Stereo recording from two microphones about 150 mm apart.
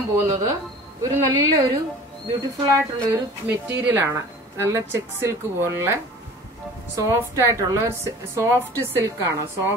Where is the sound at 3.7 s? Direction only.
15° right (ahead or behind).